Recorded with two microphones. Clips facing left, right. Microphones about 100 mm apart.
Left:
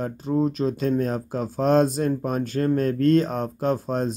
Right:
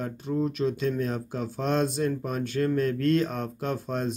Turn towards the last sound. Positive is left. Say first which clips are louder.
# left 6 dB
turn(degrees=35)  # may be behind; listen again after turning